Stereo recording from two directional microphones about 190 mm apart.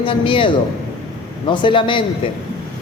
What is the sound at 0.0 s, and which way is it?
Speech, 25° left (ahead or behind).